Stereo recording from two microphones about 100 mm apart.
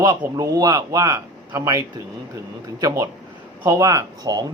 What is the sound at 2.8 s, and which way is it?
Speech, 35° right (ahead or behind).